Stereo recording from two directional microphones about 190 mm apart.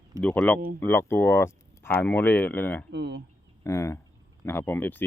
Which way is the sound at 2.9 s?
65° right (ahead or behind).